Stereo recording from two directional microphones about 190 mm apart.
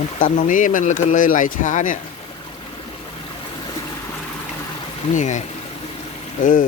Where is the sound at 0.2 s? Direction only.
45° left (ahead or behind).